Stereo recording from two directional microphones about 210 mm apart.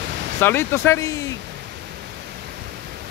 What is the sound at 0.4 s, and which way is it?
Speech, 10° left (ahead or behind).